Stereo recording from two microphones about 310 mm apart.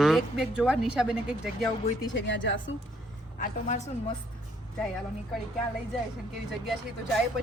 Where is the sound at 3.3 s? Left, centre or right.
Left.